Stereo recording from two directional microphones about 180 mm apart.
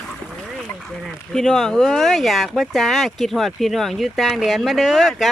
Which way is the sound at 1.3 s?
Centre (ahead or behind).